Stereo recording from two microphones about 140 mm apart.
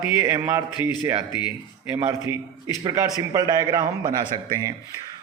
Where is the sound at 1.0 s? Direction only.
10° right (ahead or behind).